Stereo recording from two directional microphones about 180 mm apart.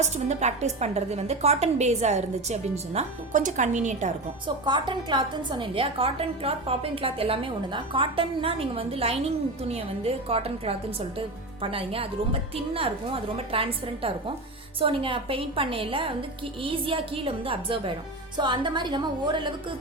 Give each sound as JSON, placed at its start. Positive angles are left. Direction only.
{"t": 0.0, "sound": "a woman's voice", "side_deg": -40}
{"t": 4.4, "sound": "a woman's voice", "side_deg": -25}